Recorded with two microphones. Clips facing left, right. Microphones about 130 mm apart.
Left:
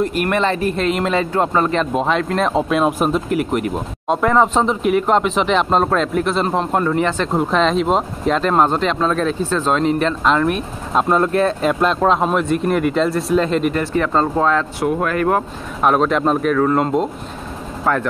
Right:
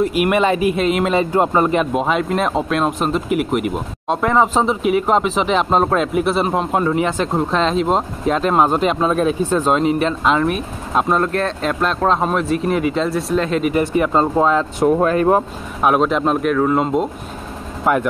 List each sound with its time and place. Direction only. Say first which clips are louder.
0.0 s speech: right 2 dB; 10° right (ahead or behind)
13.7 s speech: right 2 dB; 15° right (ahead or behind)
14.9 s speech: right 4 dB; 30° right (ahead or behind)
15.8 s speech: even; 5° right (ahead or behind)
17.9 s speech: right 2 dB; 15° right (ahead or behind)